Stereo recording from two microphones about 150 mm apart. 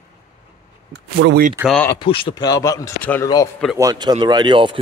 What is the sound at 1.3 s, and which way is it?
Speech, 70° right (ahead or behind).